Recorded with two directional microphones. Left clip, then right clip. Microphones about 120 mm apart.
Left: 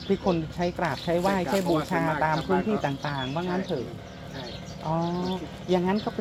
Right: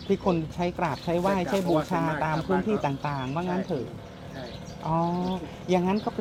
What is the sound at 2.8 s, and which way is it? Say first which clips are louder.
Speech: even; 30° right (ahead or behind).